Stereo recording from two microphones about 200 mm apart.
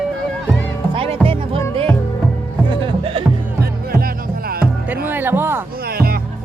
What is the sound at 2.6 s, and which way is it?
Music, 25° right (ahead or behind).